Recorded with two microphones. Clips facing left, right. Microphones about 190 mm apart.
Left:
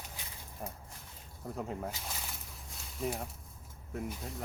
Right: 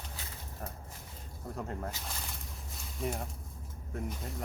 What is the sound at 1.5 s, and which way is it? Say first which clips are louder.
Speech: left 1 dB; 5° left (ahead or behind).